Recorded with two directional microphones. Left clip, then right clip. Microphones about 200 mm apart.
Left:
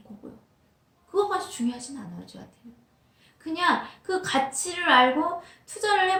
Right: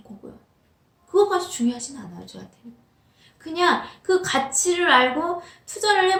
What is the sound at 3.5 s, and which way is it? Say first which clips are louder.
A woman's voice: right 4 dB; 20° right (ahead or behind).